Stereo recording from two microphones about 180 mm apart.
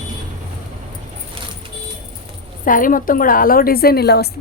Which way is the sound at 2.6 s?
50° left (ahead or behind).